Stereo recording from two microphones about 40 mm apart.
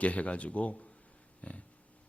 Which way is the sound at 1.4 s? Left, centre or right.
Left.